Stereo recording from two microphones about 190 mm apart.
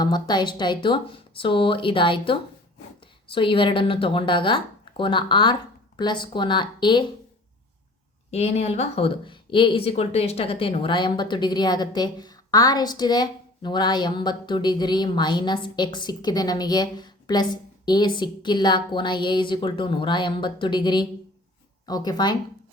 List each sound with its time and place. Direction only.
0.0 s speech: 25° left (ahead or behind)
8.3 s speech: 35° left (ahead or behind)